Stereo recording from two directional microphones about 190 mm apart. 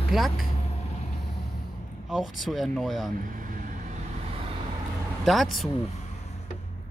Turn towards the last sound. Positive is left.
turn(degrees=0)  # may be behind; listen again after turning